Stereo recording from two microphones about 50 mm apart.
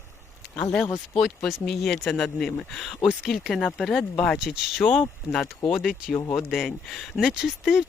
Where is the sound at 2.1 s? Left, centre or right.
Centre.